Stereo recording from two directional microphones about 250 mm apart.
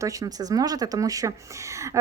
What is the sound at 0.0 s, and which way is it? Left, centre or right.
Speech, centre.